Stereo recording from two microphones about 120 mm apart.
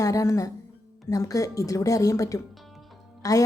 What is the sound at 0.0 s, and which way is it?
A woman's voice, 25° left (ahead or behind).